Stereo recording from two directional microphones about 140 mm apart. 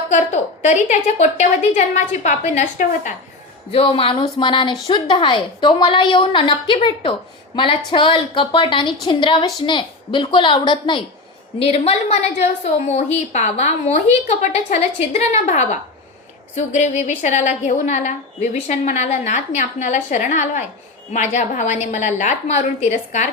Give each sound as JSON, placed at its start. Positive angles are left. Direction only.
{"t": 0.1, "sound": "a woman's voice", "side_deg": 60}
{"t": 3.7, "sound": "a woman's voice", "side_deg": 40}
{"t": 11.6, "sound": "a woman's voice", "side_deg": 45}